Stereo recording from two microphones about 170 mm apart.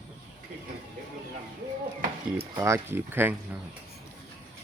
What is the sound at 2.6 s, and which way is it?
Speech, 15° right (ahead or behind).